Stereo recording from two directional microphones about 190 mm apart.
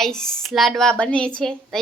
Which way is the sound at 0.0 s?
5° left (ahead or behind).